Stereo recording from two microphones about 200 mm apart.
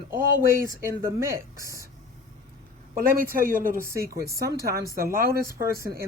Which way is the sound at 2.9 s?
45° right (ahead or behind).